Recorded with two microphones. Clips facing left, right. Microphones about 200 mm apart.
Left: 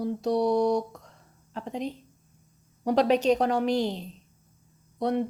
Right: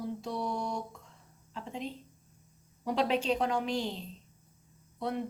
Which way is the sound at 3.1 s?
40° left (ahead or behind).